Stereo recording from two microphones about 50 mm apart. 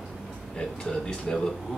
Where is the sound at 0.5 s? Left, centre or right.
Centre.